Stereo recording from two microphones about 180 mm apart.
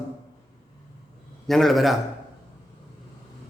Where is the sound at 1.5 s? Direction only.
Centre (ahead or behind).